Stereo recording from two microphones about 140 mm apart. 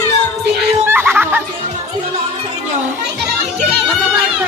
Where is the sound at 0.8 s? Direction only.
15° right (ahead or behind).